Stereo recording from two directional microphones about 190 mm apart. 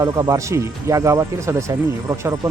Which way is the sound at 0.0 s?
15° right (ahead or behind).